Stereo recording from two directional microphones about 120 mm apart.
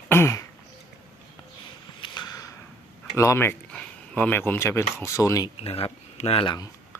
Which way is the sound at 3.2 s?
20° left (ahead or behind).